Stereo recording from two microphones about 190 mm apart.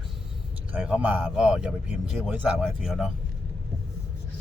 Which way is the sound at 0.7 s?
5° right (ahead or behind).